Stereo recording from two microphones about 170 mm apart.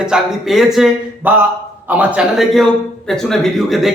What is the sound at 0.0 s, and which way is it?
A man's voice, 5° right (ahead or behind).